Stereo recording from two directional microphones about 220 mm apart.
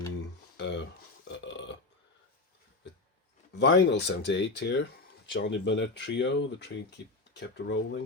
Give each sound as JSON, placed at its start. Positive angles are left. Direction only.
{"t": 0.5, "sound": "a sound", "side_deg": 55}
{"t": 1.3, "sound": "burping", "side_deg": 55}
{"t": 3.6, "sound": "speech", "side_deg": 50}